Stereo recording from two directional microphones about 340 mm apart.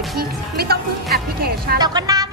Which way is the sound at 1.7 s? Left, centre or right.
Centre.